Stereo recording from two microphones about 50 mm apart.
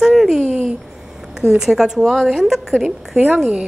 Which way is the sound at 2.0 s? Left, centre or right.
Centre.